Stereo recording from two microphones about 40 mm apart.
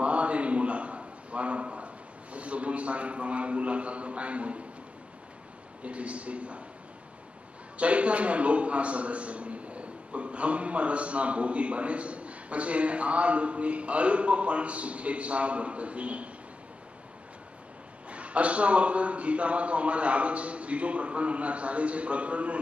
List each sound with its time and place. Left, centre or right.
0.0 s a sound: right
2.3 s a man's voice: right
5.9 s a man's voice: right
7.7 s a man's voice: right
18.1 s a man's voice: right